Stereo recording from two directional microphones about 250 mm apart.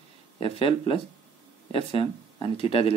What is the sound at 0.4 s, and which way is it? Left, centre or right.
Speech, left.